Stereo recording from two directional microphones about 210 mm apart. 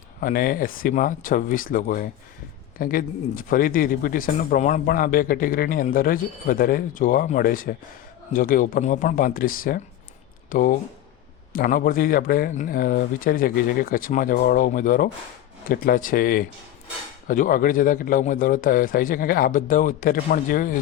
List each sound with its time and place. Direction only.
0.2 s a man's voice: 45° left (ahead or behind)